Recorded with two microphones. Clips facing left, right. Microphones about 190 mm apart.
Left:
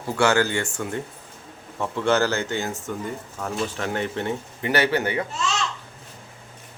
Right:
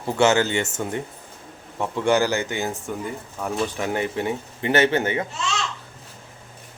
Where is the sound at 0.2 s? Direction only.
20° right (ahead or behind).